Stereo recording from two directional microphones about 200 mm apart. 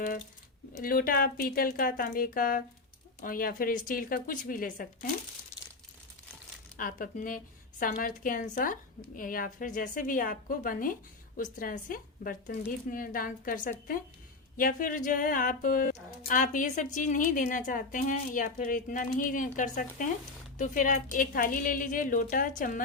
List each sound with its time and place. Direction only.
0.8 s a woman's voice: 45° left (ahead or behind)
6.7 s a woman's voice: 45° left (ahead or behind)